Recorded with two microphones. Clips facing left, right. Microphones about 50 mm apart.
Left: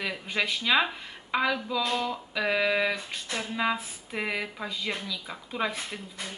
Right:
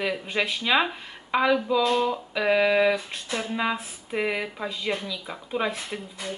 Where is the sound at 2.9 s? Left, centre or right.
Right.